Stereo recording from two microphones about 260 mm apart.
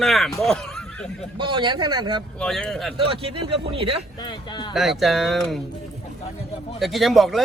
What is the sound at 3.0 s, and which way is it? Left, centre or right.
Speech, right.